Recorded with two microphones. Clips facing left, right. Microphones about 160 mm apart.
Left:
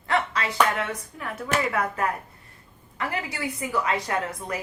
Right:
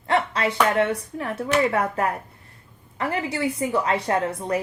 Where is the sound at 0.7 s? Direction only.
30° right (ahead or behind).